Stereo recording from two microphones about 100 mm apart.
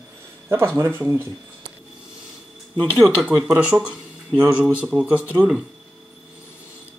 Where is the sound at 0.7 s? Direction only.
25° right (ahead or behind).